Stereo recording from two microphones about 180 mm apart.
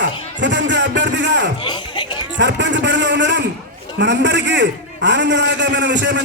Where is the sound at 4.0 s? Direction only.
75° right (ahead or behind).